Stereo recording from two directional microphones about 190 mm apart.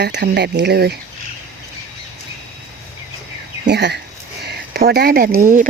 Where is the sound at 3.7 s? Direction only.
60° right (ahead or behind).